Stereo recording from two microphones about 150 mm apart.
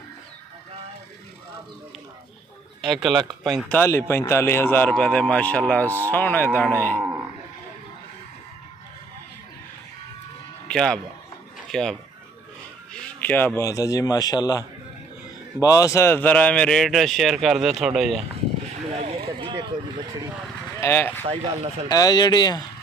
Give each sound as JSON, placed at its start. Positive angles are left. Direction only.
{"t": 2.8, "sound": "speech", "side_deg": 0}
{"t": 10.7, "sound": "speech", "side_deg": 5}
{"t": 18.7, "sound": "a sound", "side_deg": -45}
{"t": 19.2, "sound": "speech", "side_deg": -25}
{"t": 20.8, "sound": "speech", "side_deg": 15}
{"t": 21.8, "sound": "speech", "side_deg": 25}